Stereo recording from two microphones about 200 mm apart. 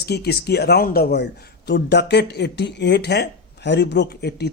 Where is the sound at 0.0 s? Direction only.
55° left (ahead or behind).